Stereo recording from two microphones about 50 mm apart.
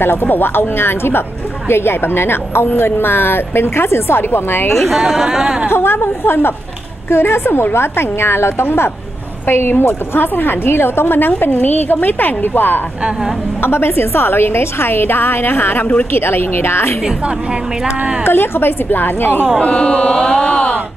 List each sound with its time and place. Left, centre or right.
0.0 s a woman's voice: left
4.7 s speech: centre
5.7 s a woman's voice: left
17.8 s speech: centre
18.2 s a woman's voice: left
19.6 s chant: left